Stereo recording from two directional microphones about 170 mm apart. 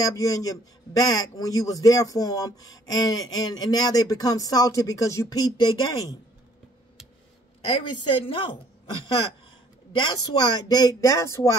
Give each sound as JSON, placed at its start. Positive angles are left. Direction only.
{"t": 0.0, "sound": "a man's voice", "side_deg": 20}
{"t": 8.3, "sound": "a woman's voice", "side_deg": 30}
{"t": 9.9, "sound": "a man's voice", "side_deg": 25}